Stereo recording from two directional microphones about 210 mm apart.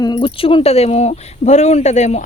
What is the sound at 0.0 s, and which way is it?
A woman's voice, 20° left (ahead or behind).